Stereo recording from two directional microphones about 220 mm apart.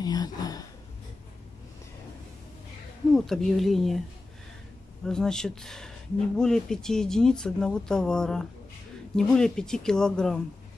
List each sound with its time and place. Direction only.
0.0 s a sound: 20° left (ahead or behind)
3.2 s speech: centre (ahead or behind)
5.0 s speech: centre (ahead or behind)